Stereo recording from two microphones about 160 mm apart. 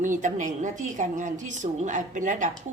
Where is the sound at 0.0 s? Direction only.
50° right (ahead or behind).